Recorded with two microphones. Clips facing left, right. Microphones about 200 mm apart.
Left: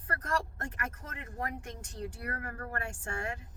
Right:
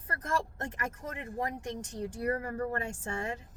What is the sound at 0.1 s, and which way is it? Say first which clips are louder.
Speech: right 1 dB; 20° right (ahead or behind).